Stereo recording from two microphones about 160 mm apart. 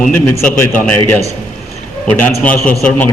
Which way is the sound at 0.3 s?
10° left (ahead or behind).